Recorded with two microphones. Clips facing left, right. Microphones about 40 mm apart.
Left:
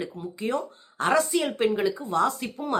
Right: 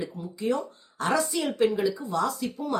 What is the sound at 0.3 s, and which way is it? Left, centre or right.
A woman's voice, left.